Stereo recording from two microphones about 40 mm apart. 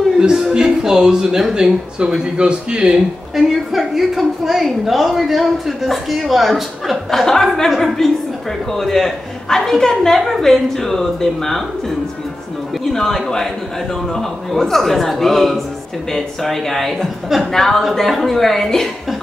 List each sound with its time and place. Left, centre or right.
0.5 s speech: centre
3.3 s a woman's voice: centre
7.1 s a woman's voice: centre
12.9 s a woman's voice: centre